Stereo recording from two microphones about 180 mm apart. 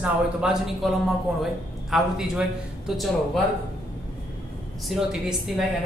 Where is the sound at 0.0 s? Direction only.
5° right (ahead or behind).